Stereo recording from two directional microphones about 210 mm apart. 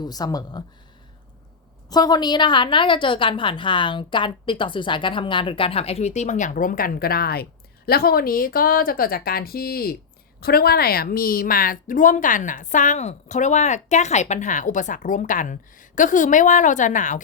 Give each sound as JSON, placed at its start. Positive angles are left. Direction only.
{"t": 0.0, "sound": "speech", "side_deg": 20}
{"t": 1.9, "sound": "a woman's voice", "side_deg": 20}